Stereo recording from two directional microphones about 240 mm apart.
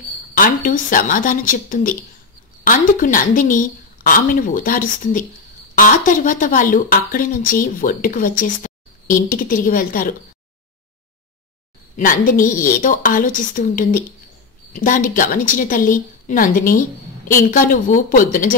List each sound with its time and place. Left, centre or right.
0.3 s a woman's voice: left
12.0 s a woman's voice: left